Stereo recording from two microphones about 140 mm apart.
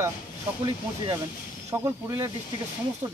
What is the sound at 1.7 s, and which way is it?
Speech, 20° right (ahead or behind).